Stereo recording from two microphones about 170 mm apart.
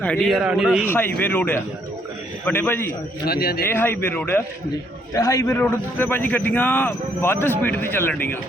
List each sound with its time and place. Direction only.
0.0 s a man's voice: 5° left (ahead or behind)
0.9 s a man's voice: 10° left (ahead or behind)
3.2 s a man's voice: 65° left (ahead or behind)
3.7 s a man's voice: 15° left (ahead or behind)